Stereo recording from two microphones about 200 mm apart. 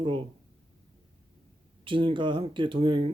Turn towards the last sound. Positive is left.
turn(degrees=-25)  # may be behind; listen again after turning